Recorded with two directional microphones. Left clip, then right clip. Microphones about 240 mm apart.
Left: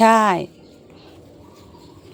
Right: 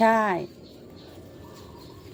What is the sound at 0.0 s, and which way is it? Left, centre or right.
Speech, left.